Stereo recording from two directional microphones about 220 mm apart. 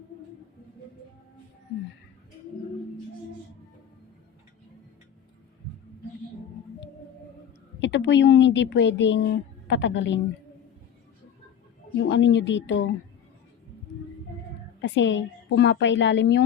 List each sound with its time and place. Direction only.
7.8 s a woman's voice: 55° left (ahead or behind)
11.9 s speech: 55° left (ahead or behind)
14.8 s a woman's voice: 55° left (ahead or behind)